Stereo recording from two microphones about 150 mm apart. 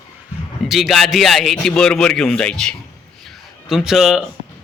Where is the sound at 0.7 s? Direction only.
Centre (ahead or behind).